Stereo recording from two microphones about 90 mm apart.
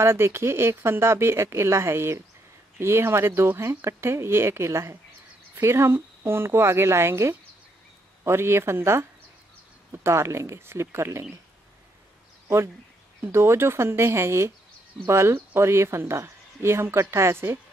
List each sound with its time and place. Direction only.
0.0 s speech: 30° right (ahead or behind)
10.0 s speech: 30° right (ahead or behind)
13.3 s speech: 30° right (ahead or behind)